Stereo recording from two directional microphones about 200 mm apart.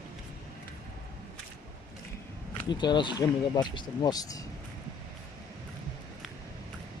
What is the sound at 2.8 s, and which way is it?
Speech, 25° left (ahead or behind).